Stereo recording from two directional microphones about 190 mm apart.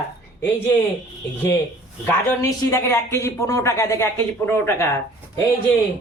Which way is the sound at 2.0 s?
15° left (ahead or behind).